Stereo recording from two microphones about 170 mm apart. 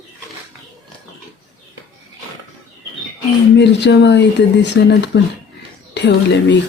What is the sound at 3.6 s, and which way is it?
Speech, 90° left.